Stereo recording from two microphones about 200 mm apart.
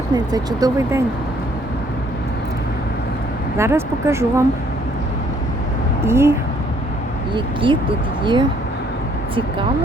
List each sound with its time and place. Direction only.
0.1 s speech: 20° right (ahead or behind)
3.6 s speech: 15° right (ahead or behind)
6.1 s speech: 15° right (ahead or behind)
7.3 s speech: 25° right (ahead or behind)